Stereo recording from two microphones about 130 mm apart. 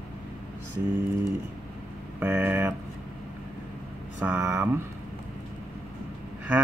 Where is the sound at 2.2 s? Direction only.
15° right (ahead or behind).